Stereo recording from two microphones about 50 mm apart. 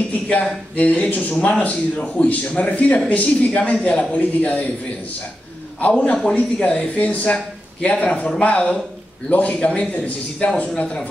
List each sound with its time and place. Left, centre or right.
0.3 s speech: left
6.2 s speech: centre
10.7 s speech: centre